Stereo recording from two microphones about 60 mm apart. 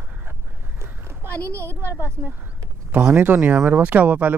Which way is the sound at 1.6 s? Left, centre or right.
Right.